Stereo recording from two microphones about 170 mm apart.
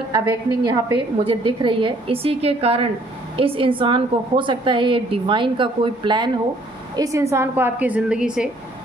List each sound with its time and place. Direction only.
0.1 s a woman's voice: 25° right (ahead or behind); by 8.5 s 5° right (ahead or behind)